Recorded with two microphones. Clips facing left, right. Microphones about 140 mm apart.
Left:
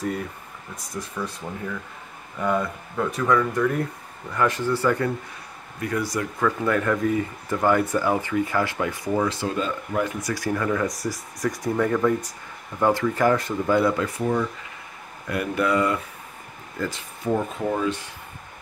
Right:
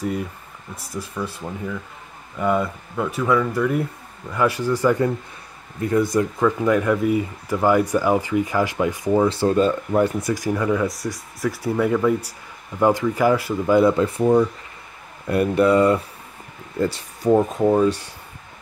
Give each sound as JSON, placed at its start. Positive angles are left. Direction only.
{"t": 0.9, "sound": "speech", "side_deg": -5}
{"t": 6.1, "sound": "speech", "side_deg": -15}
{"t": 10.2, "sound": "speech", "side_deg": -15}
{"t": 13.7, "sound": "speech", "side_deg": -25}